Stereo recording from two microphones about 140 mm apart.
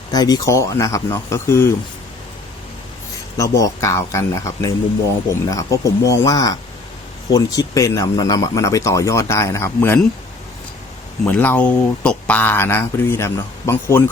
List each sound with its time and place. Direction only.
0.1 s speech: 25° left (ahead or behind)
3.3 s speech: 25° left (ahead or behind)
11.3 s speech: 15° left (ahead or behind)